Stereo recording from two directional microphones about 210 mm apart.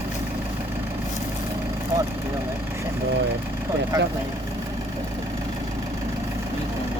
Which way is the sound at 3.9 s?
15° right (ahead or behind).